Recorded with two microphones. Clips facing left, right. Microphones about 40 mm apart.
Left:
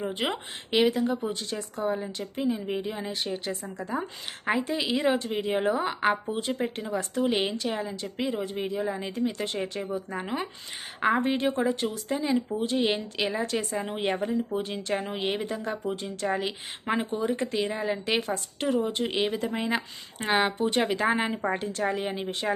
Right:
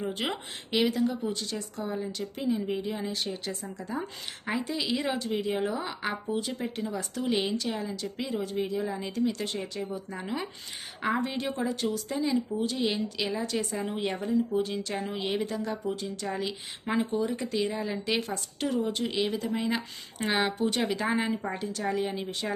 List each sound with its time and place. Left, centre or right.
0.0 s speech: centre
3.1 s speech: left
5.4 s speech: left
8.3 s speech: left
13.4 s a woman's voice: left
13.7 s speech: left
14.6 s speech: left
15.6 s speech: left
17.2 s a woman's voice: left
17.5 s speech: centre
18.9 s a woman's voice: left